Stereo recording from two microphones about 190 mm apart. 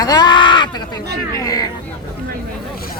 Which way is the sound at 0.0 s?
20° left (ahead or behind).